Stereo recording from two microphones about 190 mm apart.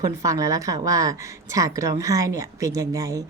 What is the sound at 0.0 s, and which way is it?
A woman's voice, 20° right (ahead or behind).